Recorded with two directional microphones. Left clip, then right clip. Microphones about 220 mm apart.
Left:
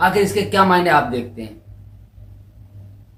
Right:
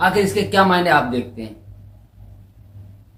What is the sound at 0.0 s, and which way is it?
Speech, 5° left (ahead or behind).